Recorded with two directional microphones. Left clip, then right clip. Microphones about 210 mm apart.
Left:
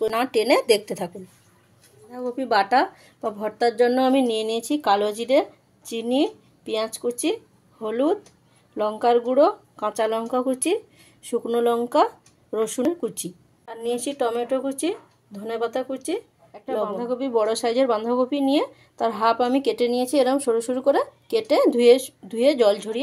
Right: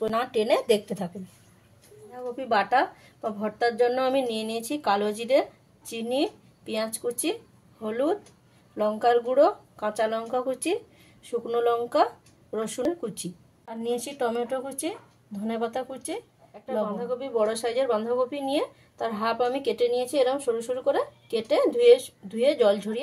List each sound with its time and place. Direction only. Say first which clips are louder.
0.1 s speech: left 4 dB; 40° left (ahead or behind)
2.1 s speech: left 4 dB; 35° left (ahead or behind)